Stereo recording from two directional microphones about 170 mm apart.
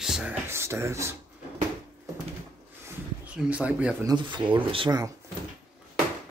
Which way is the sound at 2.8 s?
5° right (ahead or behind).